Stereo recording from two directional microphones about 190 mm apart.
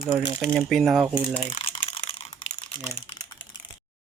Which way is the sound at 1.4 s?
35° left (ahead or behind).